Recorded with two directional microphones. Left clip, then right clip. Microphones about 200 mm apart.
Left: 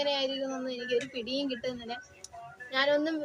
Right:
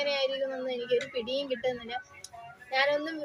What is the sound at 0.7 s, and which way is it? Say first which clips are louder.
A woman's voice: right 2 dB; 15° left (ahead or behind).